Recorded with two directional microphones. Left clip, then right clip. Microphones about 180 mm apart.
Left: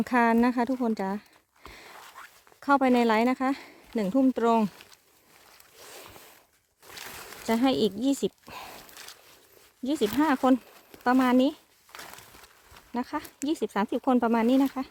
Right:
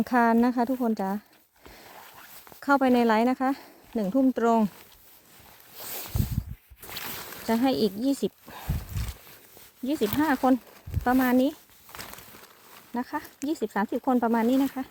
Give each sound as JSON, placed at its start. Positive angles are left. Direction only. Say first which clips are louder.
{"t": 0.0, "sound": "speech", "louder": "right 1 dB", "side_deg": -5}
{"t": 1.6, "sound": "a sound", "louder": "left 2 dB", "side_deg": -5}
{"t": 2.6, "sound": "speech", "louder": "even", "side_deg": -10}
{"t": 5.7, "sound": "boat", "louder": "right 6 dB", "side_deg": -65}
{"t": 7.4, "sound": "speech", "louder": "even", "side_deg": 0}
{"t": 9.8, "sound": "speech", "louder": "even", "side_deg": 0}
{"t": 12.9, "sound": "speech", "louder": "even", "side_deg": 5}